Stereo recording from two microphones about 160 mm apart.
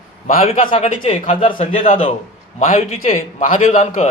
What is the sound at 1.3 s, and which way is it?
Speech, 35° left (ahead or behind).